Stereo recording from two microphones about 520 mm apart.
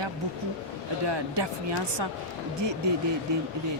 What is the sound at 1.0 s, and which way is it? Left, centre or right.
Speech, right.